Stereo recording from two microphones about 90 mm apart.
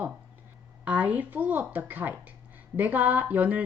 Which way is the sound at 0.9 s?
15° right (ahead or behind).